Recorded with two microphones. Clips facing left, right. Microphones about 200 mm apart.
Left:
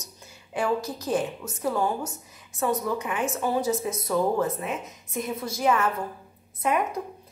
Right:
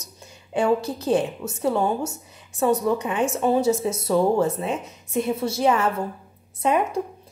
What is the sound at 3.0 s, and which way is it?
A woman's voice, 30° right (ahead or behind).